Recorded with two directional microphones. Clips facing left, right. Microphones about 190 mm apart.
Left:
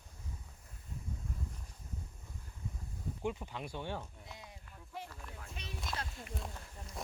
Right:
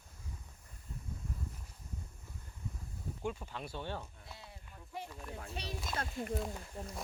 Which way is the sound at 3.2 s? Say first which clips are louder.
Left 1 dB; 15° left (ahead or behind).